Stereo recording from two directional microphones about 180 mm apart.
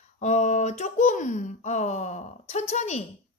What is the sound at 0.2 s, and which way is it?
Speech, 40° left (ahead or behind).